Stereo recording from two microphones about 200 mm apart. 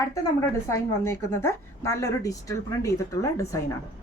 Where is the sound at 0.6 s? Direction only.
15° left (ahead or behind).